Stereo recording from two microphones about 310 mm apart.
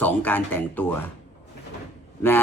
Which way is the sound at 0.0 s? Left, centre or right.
Centre.